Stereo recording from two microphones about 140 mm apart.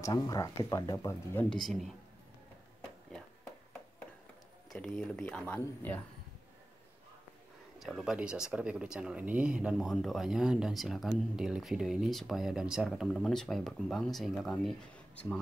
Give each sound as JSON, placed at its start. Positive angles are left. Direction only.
{"t": 0.0, "sound": "speech", "side_deg": 25}
{"t": 1.5, "sound": "speech", "side_deg": 0}
{"t": 4.7, "sound": "speech", "side_deg": 5}
{"t": 7.8, "sound": "speech", "side_deg": 0}